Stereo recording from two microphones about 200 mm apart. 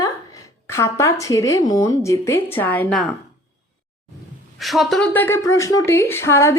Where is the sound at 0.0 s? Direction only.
15° left (ahead or behind).